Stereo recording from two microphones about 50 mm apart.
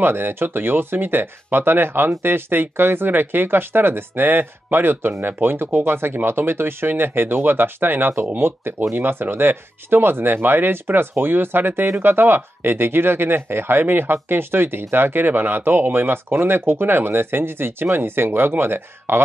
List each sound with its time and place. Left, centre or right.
0.0 s speech: right